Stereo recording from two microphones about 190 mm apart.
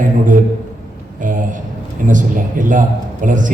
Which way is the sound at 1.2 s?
45° right (ahead or behind).